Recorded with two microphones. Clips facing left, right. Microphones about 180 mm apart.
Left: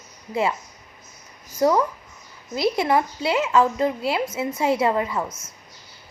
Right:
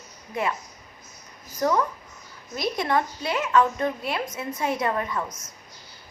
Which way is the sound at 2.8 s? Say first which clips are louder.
Left 4 dB; 25° left (ahead or behind).